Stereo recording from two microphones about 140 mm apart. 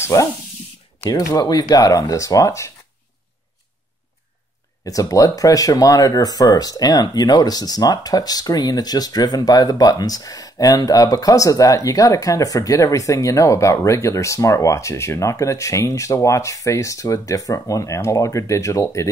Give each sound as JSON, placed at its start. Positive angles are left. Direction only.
{"t": 0.0, "sound": "speech", "side_deg": 20}
{"t": 1.3, "sound": "speech", "side_deg": 25}
{"t": 4.8, "sound": "speech", "side_deg": 25}